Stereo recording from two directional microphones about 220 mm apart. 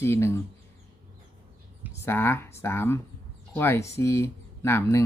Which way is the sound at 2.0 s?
10° left (ahead or behind).